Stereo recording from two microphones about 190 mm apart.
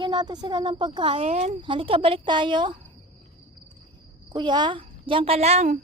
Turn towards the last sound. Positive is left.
turn(degrees=-40)  # may be behind; listen again after turning